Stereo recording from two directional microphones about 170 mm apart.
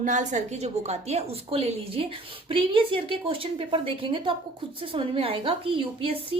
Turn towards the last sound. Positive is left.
turn(degrees=-30)  # may be behind; listen again after turning